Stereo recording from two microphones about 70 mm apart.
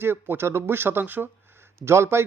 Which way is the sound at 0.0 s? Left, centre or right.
Right.